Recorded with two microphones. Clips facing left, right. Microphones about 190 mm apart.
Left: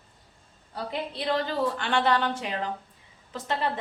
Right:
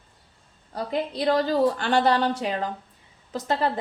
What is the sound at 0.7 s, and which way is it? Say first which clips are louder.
A woman's voice: right 5 dB; 40° right (ahead or behind).